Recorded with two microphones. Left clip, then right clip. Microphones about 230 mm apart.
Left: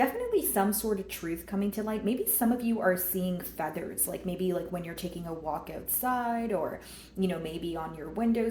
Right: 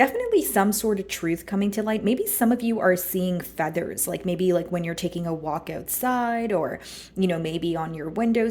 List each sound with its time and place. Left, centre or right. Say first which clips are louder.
0.0 s a woman's voice: right 7 dB; right